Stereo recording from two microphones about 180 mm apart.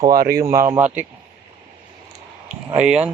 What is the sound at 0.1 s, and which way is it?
Speech, 55° right (ahead or behind).